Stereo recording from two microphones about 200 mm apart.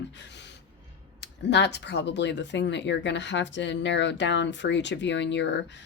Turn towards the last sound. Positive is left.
turn(degrees=60)  # may be behind; listen again after turning